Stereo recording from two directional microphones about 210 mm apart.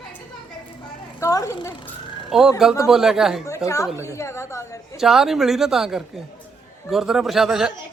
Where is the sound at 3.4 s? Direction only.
15° left (ahead or behind).